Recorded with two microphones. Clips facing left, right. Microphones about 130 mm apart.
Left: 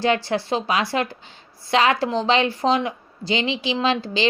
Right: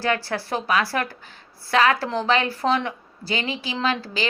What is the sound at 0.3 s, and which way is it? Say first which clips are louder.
Speech: left 2 dB; 20° left (ahead or behind).